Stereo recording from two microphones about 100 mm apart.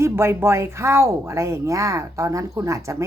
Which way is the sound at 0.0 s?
25° right (ahead or behind).